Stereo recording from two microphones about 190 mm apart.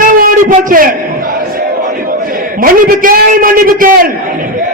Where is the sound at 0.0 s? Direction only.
50° right (ahead or behind).